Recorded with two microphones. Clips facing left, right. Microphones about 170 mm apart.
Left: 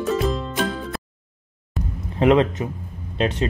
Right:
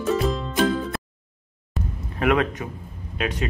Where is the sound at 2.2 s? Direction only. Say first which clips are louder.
Left 5 dB; 25° left (ahead or behind).